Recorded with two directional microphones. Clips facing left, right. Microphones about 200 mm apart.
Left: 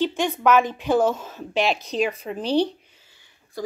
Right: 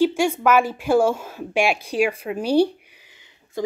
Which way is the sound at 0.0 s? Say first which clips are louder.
Right 3 dB; 10° right (ahead or behind).